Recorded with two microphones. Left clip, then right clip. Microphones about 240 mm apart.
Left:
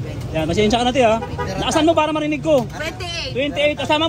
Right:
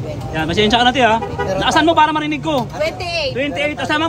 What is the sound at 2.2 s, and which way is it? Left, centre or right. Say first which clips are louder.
Speech: even; right.